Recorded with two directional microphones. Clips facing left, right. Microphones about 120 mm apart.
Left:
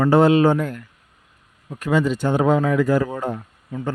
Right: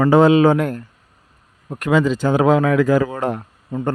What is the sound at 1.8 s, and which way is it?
Speech, 90° right.